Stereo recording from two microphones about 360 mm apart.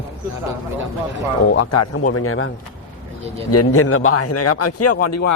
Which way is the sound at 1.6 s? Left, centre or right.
Left.